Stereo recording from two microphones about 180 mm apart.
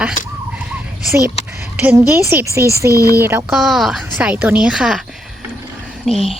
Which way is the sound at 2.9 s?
20° left (ahead or behind).